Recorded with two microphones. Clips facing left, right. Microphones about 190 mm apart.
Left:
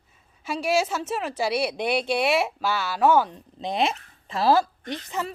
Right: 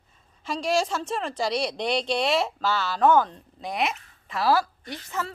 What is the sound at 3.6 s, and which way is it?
A woman's voice, 25° left (ahead or behind).